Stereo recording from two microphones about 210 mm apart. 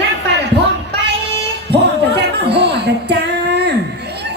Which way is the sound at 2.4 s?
55° right (ahead or behind).